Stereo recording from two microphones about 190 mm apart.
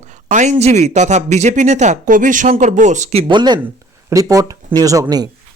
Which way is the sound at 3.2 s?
25° right (ahead or behind).